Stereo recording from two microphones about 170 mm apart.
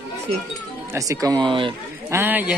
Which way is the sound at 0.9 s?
20° right (ahead or behind).